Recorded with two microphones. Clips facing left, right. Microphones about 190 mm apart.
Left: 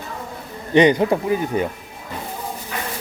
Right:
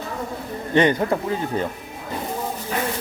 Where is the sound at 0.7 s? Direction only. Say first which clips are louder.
Left 4 dB; 15° left (ahead or behind).